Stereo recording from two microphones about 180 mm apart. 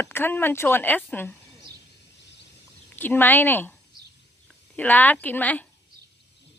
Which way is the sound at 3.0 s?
10° left (ahead or behind).